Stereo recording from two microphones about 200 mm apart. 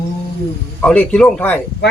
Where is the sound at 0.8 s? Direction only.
5° left (ahead or behind).